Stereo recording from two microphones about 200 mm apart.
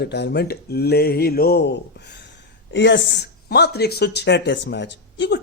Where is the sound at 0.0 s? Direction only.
60° left (ahead or behind).